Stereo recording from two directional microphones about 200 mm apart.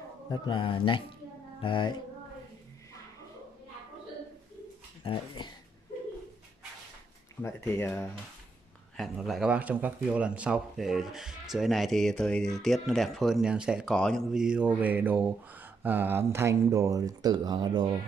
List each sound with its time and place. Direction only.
0.3 s speech: 25° left (ahead or behind)
5.0 s speech: 25° left (ahead or behind)
7.4 s speech: 15° left (ahead or behind)
8.9 s speech: centre (ahead or behind); by 17.9 s 20° right (ahead or behind)